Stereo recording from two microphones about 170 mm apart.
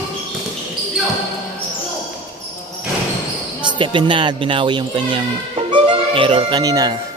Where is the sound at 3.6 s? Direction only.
30° right (ahead or behind).